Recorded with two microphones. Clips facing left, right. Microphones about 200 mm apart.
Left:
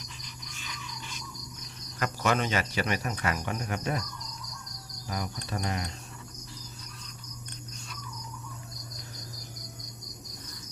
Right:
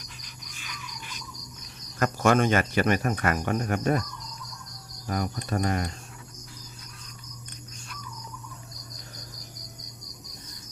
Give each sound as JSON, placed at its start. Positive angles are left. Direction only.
{"t": 2.0, "sound": "speech", "side_deg": -50}
{"t": 5.0, "sound": "cricket", "side_deg": -50}
{"t": 5.5, "sound": "speech", "side_deg": -50}